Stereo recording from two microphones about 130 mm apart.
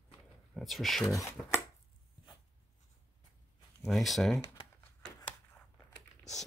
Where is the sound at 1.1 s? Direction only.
25° left (ahead or behind).